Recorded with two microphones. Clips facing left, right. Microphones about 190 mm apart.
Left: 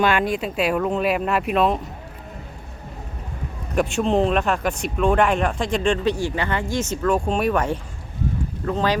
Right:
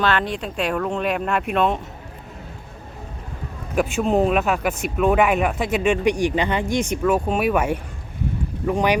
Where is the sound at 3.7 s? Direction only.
Centre (ahead or behind).